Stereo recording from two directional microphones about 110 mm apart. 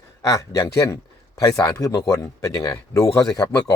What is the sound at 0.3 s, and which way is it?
Speech, 30° left (ahead or behind).